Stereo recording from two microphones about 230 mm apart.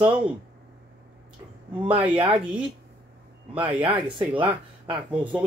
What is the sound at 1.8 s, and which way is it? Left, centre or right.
Speech, centre.